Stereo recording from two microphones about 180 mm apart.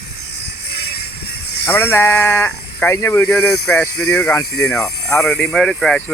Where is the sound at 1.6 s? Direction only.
15° left (ahead or behind).